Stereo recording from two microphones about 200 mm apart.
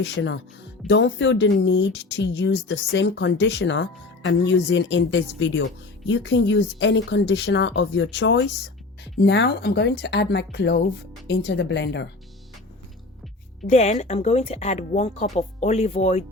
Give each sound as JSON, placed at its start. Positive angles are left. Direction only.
{"t": 0.0, "sound": "speech", "side_deg": 60}
{"t": 13.7, "sound": "speech", "side_deg": 35}